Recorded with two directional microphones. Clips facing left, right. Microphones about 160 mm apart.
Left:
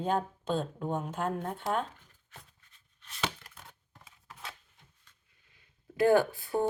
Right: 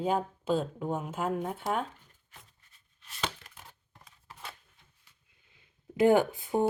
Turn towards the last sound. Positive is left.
turn(degrees=-20)  # may be behind; listen again after turning